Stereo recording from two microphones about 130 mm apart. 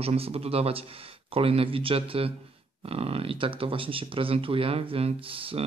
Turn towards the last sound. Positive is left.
turn(degrees=-45)  # may be behind; listen again after turning